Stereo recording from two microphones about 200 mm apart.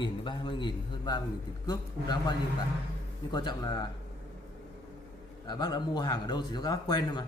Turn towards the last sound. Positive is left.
turn(degrees=20)  # may be behind; listen again after turning